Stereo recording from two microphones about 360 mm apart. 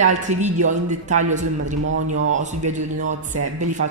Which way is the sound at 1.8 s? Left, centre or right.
Right.